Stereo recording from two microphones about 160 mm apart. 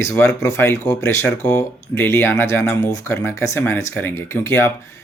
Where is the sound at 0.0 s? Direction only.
15° left (ahead or behind).